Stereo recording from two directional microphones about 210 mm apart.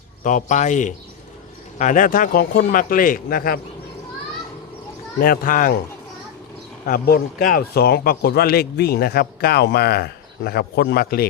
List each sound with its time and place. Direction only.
0.2 s speech: 35° left (ahead or behind)
5.2 s a man's voice: 45° left (ahead or behind)
6.8 s a man's voice: 45° left (ahead or behind)